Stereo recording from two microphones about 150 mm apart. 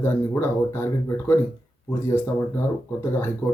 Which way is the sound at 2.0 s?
15° left (ahead or behind).